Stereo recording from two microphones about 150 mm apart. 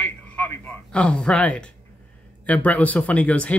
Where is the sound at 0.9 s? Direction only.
5° left (ahead or behind).